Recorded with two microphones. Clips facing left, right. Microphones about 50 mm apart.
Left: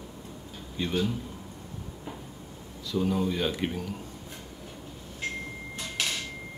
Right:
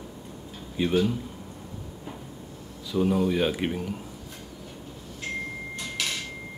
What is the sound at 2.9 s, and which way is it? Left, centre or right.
Speech, right.